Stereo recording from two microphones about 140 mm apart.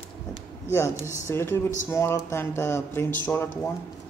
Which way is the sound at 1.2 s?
15° left (ahead or behind).